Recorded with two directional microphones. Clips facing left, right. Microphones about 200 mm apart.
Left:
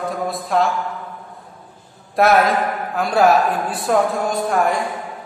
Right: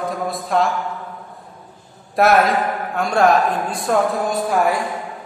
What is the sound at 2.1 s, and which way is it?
A man's voice, centre (ahead or behind).